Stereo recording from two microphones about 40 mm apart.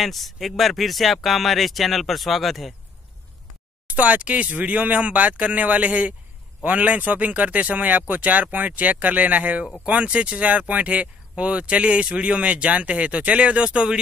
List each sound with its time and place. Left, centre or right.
0.0 s speech: centre
3.9 s speech: right